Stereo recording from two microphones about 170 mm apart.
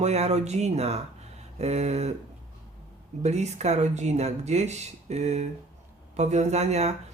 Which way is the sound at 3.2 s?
40° right (ahead or behind).